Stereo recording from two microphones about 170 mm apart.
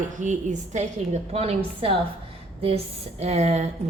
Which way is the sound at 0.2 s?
45° right (ahead or behind).